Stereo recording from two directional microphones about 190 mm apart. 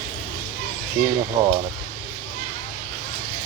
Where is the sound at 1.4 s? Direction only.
20° right (ahead or behind).